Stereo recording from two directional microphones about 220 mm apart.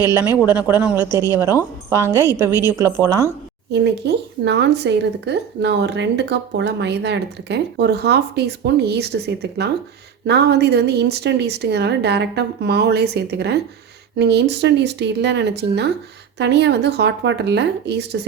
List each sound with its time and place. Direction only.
0.0 s a woman's voice: 10° right (ahead or behind)
3.7 s speech: 50° right (ahead or behind)